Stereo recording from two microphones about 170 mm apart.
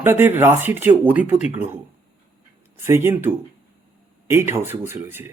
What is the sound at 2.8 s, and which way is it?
Speech, 15° right (ahead or behind).